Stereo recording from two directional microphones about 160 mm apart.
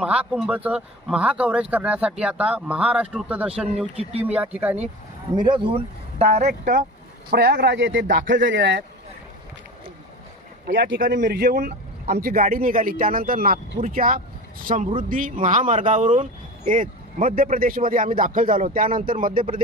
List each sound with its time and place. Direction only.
0.0 s speech: 10° right (ahead or behind)
3.9 s speech: 40° right (ahead or behind)
4.3 s speech: 10° right (ahead or behind)
5.3 s speech: 30° right (ahead or behind); by 6.8 s 50° right (ahead or behind)
7.2 s a man's voice: 85° right
10.8 s speech: 90° right; by 14.2 s 60° right (ahead or behind)
14.7 s speech: 50° right (ahead or behind)